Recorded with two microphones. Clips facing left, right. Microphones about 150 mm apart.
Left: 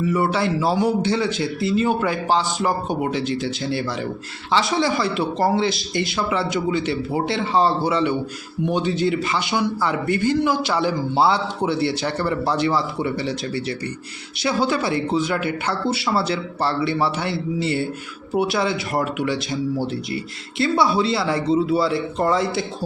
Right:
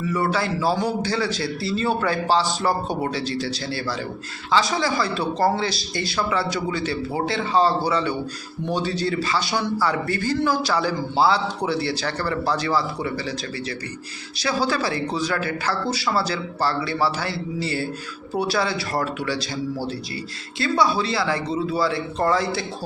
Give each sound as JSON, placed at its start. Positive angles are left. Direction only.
{"t": 0.1, "sound": "a man's voice", "side_deg": 25}
{"t": 20.6, "sound": "a man's voice", "side_deg": 25}